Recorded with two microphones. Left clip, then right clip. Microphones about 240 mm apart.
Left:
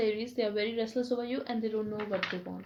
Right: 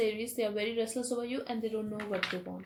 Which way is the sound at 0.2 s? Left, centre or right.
Left.